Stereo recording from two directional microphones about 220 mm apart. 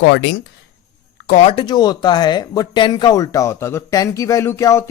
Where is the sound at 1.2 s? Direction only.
35° left (ahead or behind).